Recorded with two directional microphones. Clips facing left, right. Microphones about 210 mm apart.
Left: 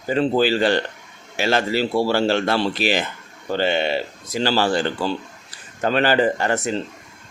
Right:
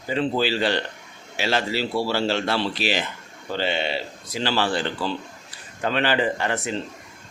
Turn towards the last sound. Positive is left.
turn(degrees=40)  # may be behind; listen again after turning